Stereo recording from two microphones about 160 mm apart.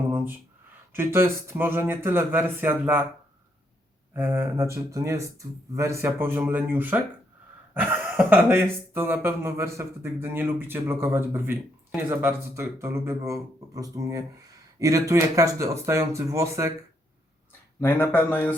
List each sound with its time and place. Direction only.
0.9 s speech: 15° right (ahead or behind)
4.1 s speech: 10° right (ahead or behind)
17.7 s speech: 15° left (ahead or behind)